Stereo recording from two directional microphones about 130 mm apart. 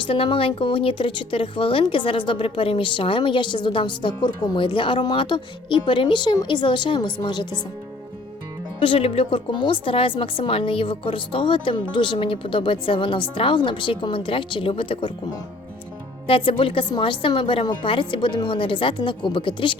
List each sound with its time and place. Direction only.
0.0 s speech: 40° left (ahead or behind)
8.8 s speech: 45° left (ahead or behind)
16.2 s speech: 45° left (ahead or behind)